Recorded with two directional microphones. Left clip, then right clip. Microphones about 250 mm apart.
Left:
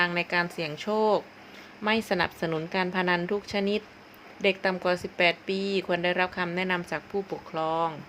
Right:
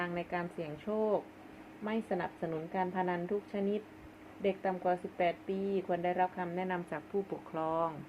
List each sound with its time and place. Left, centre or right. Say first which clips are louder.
0.0 s a woman's voice: left 11 dB; centre